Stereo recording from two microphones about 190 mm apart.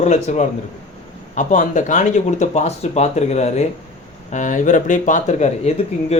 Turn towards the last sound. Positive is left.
turn(degrees=35)  # may be behind; listen again after turning